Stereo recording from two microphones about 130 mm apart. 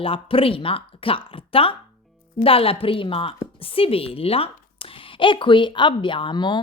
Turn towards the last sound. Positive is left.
turn(degrees=35)  # may be behind; listen again after turning